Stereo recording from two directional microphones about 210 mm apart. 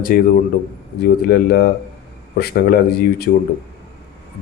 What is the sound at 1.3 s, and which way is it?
Speech, 50° left (ahead or behind).